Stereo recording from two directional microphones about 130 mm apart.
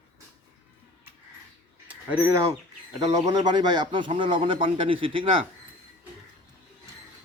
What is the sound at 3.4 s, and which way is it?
Speech, 35° right (ahead or behind).